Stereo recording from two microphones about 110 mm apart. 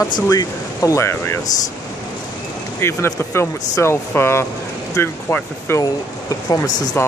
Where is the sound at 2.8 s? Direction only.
25° left (ahead or behind).